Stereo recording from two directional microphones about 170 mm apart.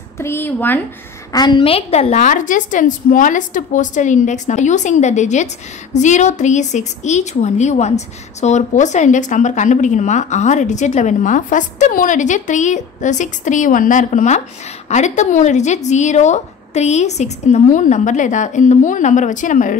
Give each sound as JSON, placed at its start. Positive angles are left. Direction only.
{"t": 0.2, "sound": "a woman's voice", "side_deg": 10}
{"t": 1.3, "sound": "a woman's voice", "side_deg": 25}